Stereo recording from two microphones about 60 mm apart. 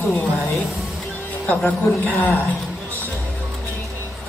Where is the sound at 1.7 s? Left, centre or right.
Left.